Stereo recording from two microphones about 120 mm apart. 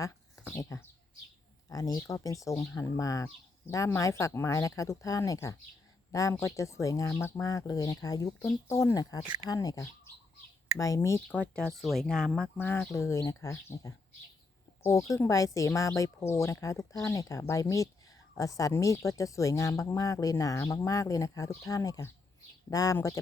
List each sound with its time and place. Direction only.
0.6 s a woman's voice: 25° left (ahead or behind)
11.3 s speech: 10° left (ahead or behind)
11.8 s speech: centre (ahead or behind)
12.5 s a woman's voice: 20° left (ahead or behind)
15.1 s a woman's voice: 25° left (ahead or behind)